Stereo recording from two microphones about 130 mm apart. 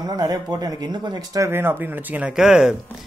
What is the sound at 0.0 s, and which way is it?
Speech, 30° right (ahead or behind).